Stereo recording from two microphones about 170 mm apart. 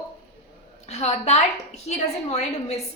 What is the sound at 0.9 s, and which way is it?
A woman's voice, 40° left (ahead or behind).